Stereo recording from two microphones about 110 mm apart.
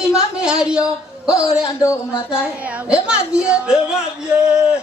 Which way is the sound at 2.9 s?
10° right (ahead or behind).